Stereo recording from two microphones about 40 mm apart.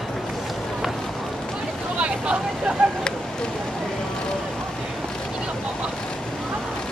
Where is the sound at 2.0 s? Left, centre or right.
Right.